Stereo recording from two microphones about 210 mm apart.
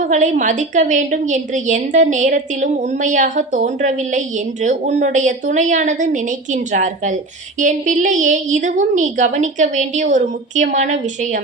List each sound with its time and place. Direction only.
0.0 s a woman's voice: 35° right (ahead or behind)